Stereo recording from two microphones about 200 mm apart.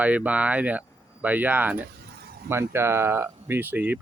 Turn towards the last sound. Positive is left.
turn(degrees=-10)  # may be behind; listen again after turning